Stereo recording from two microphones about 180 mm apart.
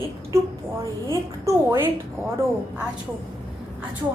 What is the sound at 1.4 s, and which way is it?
Speech, 15° right (ahead or behind).